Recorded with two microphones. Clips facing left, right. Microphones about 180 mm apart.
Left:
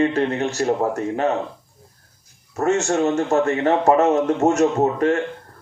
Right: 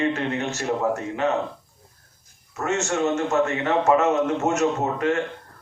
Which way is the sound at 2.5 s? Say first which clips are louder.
Left 5 dB; 35° left (ahead or behind).